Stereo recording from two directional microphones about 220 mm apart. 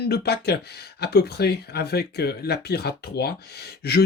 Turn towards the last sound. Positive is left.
turn(degrees=45)  # may be behind; listen again after turning